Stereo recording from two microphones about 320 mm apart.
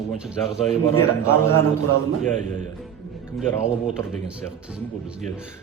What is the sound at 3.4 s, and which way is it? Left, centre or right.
Speech, centre.